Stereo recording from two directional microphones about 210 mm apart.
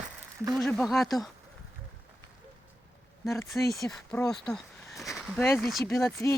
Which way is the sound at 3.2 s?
15° left (ahead or behind).